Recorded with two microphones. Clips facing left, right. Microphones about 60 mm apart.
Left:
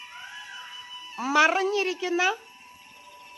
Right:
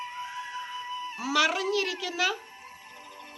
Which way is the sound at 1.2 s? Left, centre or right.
Left.